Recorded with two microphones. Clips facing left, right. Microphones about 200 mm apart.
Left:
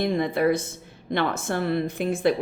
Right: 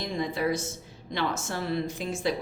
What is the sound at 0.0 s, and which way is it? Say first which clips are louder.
A woman's voice: left 7 dB; 60° left (ahead or behind).